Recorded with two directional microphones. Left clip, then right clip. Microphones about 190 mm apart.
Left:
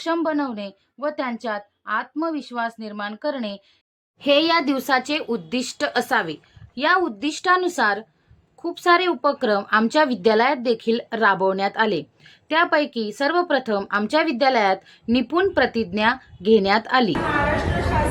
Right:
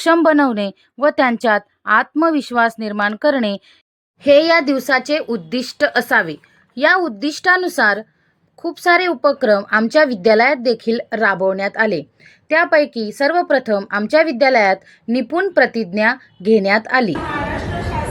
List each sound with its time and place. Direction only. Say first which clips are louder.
0.0 s speech: right 10 dB; 40° right (ahead or behind)
4.2 s a woman's voice: right 7 dB; 15° right (ahead or behind)
14.8 s a woman's voice: right 2 dB; centre (ahead or behind)
17.3 s chatter: left 1 dB; 5° left (ahead or behind)